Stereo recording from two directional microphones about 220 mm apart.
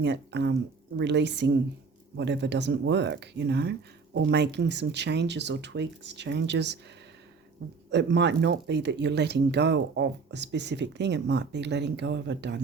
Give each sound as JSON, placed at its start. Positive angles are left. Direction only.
{"t": 0.0, "sound": "speech", "side_deg": -50}
{"t": 7.9, "sound": "speech", "side_deg": -50}